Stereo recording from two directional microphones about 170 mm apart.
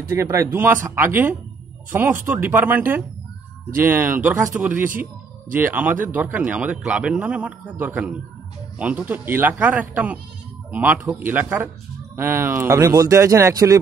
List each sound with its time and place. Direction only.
0.1 s a man's voice: 15° right (ahead or behind)